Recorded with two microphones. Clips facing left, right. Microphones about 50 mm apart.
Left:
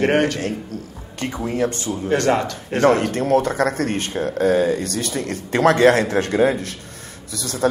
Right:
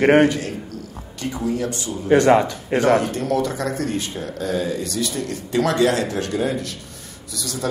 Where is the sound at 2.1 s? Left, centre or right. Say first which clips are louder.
Right 5 dB; centre.